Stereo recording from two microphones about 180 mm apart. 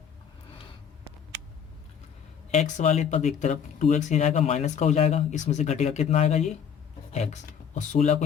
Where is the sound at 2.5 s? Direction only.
40° left (ahead or behind).